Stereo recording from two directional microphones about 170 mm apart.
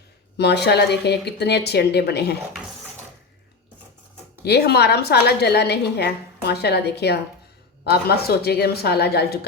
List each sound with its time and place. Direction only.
0.3 s a woman's voice: 80° left
4.4 s a woman's voice: 75° left (ahead or behind)